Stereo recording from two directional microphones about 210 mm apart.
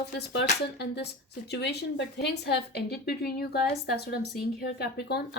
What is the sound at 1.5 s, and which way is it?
Speech, 55° left (ahead or behind).